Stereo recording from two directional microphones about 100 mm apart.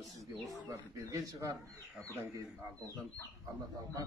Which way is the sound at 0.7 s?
35° right (ahead or behind).